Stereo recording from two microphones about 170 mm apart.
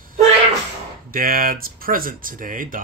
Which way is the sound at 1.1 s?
55° right (ahead or behind).